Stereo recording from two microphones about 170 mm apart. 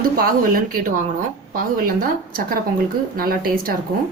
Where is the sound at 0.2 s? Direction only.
60° right (ahead or behind).